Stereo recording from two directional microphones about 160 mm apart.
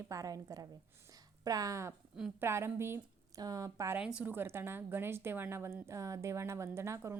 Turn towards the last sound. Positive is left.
turn(degrees=-15)  # may be behind; listen again after turning